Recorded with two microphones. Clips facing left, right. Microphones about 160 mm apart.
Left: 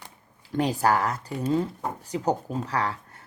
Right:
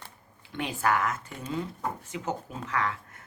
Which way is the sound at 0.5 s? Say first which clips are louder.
Left 5 dB; 35° left (ahead or behind).